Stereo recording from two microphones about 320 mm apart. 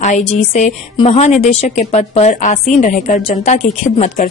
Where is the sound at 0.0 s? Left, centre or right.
Left.